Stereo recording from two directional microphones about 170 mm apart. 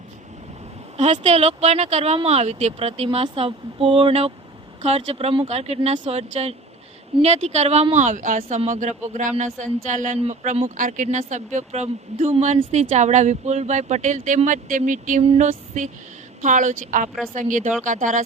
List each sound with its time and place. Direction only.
0.9 s speech: 40° right (ahead or behind)